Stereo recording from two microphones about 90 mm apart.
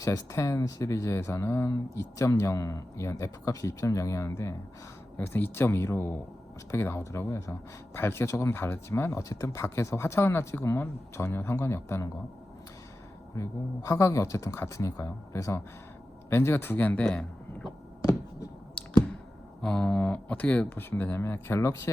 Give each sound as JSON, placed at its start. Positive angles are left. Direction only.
{"t": 0.0, "sound": "speech", "side_deg": 40}
{"t": 13.3, "sound": "speech", "side_deg": 35}
{"t": 19.6, "sound": "speech", "side_deg": 10}